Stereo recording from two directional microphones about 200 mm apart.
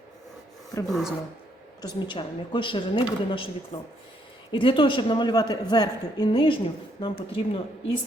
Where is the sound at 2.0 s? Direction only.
25° left (ahead or behind).